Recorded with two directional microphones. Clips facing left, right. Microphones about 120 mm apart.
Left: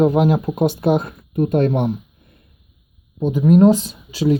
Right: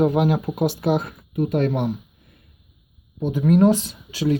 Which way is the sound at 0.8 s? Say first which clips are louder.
Left 4 dB; 45° left (ahead or behind).